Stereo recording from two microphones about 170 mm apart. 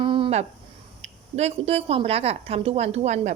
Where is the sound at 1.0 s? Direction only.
40° right (ahead or behind).